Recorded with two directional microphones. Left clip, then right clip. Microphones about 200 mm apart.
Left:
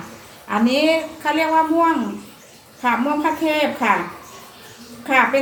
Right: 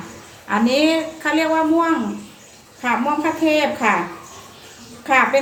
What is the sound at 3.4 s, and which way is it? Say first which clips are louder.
Speech: right 2 dB; 15° right (ahead or behind).